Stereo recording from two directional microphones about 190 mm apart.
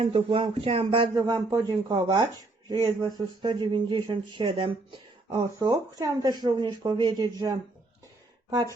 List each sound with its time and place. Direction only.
0.0 s speech: 30° right (ahead or behind)